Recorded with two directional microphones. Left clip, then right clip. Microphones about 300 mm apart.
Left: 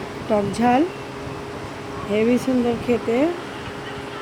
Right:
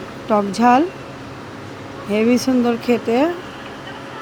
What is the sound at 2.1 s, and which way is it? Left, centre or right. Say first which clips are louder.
Speech: right 3 dB; centre.